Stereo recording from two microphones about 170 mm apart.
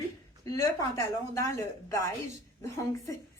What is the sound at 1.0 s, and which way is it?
A woman's voice, 20° left (ahead or behind).